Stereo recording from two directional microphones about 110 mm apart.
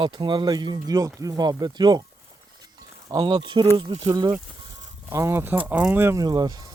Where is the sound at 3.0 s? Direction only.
40° right (ahead or behind).